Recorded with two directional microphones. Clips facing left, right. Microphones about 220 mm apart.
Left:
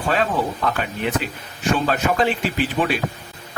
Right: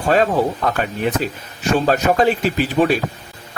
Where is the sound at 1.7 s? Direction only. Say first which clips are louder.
Right 5 dB; 40° right (ahead or behind).